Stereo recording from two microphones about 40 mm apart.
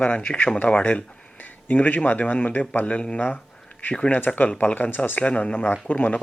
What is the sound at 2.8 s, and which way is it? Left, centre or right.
Speech, left.